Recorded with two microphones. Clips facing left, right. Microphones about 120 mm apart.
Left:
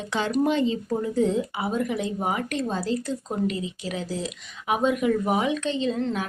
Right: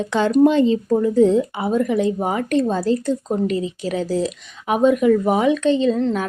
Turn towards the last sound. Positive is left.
turn(degrees=-35)  # may be behind; listen again after turning